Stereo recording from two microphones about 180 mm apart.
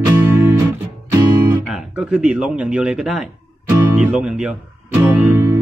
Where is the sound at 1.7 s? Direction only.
5° right (ahead or behind).